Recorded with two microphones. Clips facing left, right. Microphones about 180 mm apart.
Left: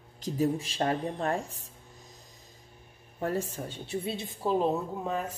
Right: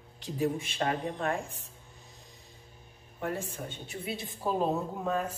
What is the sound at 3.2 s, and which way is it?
Speech, 40° left (ahead or behind).